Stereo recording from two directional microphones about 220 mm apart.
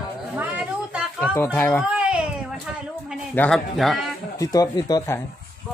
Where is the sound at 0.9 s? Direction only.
5° right (ahead or behind).